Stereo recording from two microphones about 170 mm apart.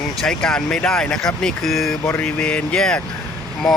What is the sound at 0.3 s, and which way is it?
Speech, 5° left (ahead or behind).